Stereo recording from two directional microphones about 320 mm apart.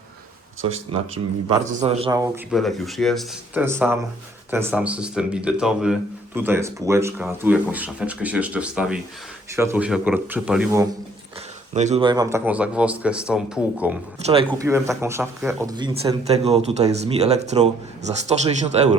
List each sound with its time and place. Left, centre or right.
0.7 s a man's voice: centre
11.7 s a man's voice: right